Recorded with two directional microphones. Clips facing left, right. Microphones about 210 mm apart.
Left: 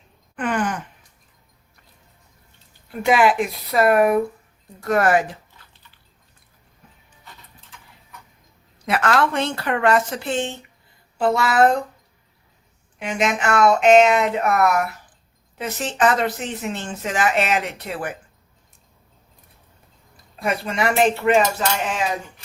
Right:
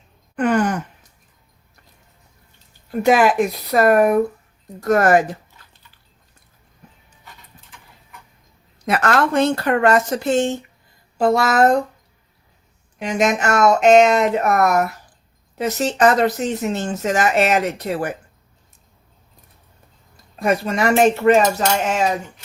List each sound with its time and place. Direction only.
0.3 s gasp: 40° right (ahead or behind)
3.0 s speech: 40° right (ahead or behind)
8.9 s speech: 45° right (ahead or behind)
13.0 s speech: 40° right (ahead or behind)
20.4 s speech: 40° right (ahead or behind)